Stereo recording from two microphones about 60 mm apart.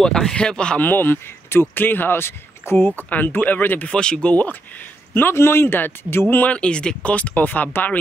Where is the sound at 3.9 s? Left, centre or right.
Centre.